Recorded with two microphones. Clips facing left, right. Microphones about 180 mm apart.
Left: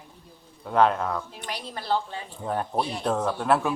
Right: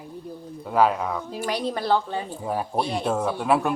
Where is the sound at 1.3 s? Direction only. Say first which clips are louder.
Right 9 dB; 80° right; by 2.0 s 65° right (ahead or behind).